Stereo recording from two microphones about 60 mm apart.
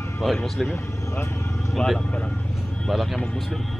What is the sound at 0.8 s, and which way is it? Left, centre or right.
Vehicle, left.